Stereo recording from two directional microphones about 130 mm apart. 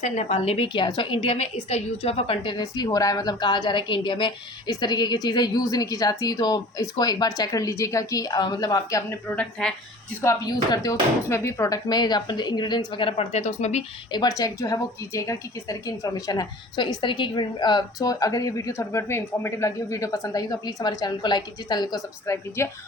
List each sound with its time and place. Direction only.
0.0 s a woman's voice: 55° left (ahead or behind); by 1.2 s 40° left (ahead or behind)
1.4 s a woman's voice: 50° left (ahead or behind); by 9.1 s 25° left (ahead or behind)
9.3 s speech: 10° left (ahead or behind)
10.2 s a woman's voice: 25° left (ahead or behind)
11.3 s a woman's voice: 20° left (ahead or behind); by 13.8 s 60° left (ahead or behind)
14.1 s a woman's voice: 30° left (ahead or behind)